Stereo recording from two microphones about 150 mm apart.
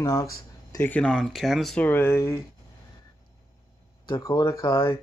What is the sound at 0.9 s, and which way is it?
Speech, 5° left (ahead or behind).